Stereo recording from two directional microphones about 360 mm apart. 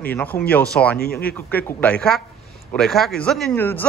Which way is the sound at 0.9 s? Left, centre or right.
Left.